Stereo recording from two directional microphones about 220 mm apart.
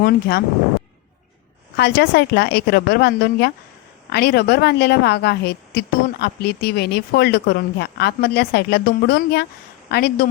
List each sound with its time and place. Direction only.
0.0 s a woman's voice: 45° left (ahead or behind)
1.7 s a woman's voice: 50° left (ahead or behind)